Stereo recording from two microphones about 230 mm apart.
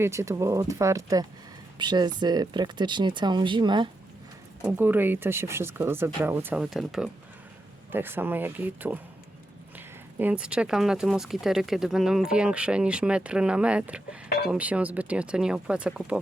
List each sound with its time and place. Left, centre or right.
0.0 s speech: centre
4.6 s speech: centre